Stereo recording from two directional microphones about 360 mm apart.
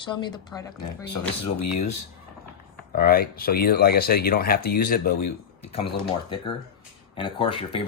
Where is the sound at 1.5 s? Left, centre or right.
Left.